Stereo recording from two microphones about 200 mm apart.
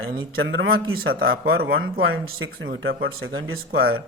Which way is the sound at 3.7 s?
50° right (ahead or behind).